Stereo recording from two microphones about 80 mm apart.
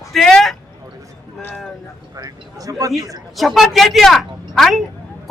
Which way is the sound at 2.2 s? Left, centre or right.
Right.